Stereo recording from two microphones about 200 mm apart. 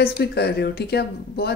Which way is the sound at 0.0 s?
55° left (ahead or behind).